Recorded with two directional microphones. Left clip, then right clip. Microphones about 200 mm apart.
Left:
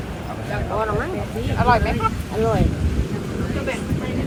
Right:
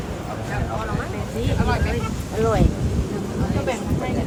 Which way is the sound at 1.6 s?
Centre (ahead or behind).